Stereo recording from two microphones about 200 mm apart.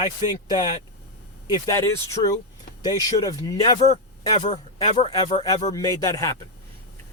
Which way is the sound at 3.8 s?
35° left (ahead or behind).